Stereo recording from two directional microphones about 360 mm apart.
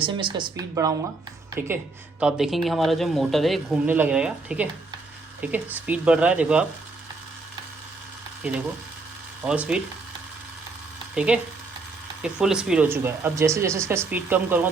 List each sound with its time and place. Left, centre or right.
0.0 s speech: centre
9.4 s speech: centre
11.1 s speech: centre